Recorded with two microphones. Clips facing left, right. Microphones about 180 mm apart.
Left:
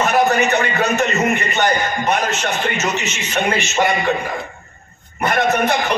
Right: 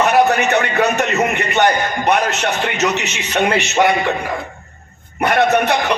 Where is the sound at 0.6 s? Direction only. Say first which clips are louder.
Right 2 dB; 65° right (ahead or behind).